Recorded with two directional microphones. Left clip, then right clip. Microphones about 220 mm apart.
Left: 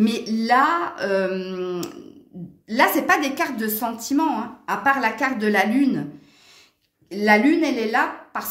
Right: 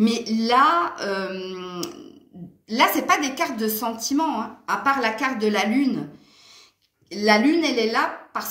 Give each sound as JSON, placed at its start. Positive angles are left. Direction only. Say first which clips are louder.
{"t": 0.0, "sound": "a woman's voice", "louder": "even", "side_deg": 40}
{"t": 7.1, "sound": "a woman's voice", "louder": "left 1 dB", "side_deg": 35}